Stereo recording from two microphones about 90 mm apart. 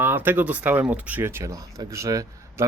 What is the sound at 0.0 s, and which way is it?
A man's voice, 25° right (ahead or behind).